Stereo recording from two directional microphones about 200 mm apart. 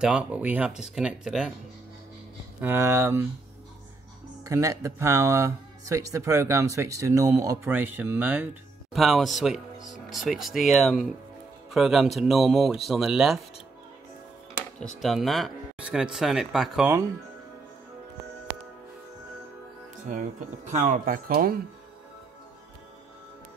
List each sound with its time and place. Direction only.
0.0 s speech: 5° right (ahead or behind)
2.6 s speech: 10° right (ahead or behind)
4.5 s speech: 15° right (ahead or behind)
14.8 s speech: centre (ahead or behind)
20.6 s speech: 40° right (ahead or behind)